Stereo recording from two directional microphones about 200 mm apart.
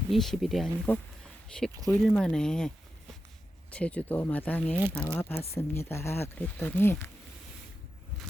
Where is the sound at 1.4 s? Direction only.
5° left (ahead or behind).